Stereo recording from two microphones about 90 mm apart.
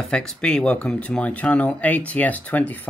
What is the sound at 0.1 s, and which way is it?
Speech, 5° left (ahead or behind).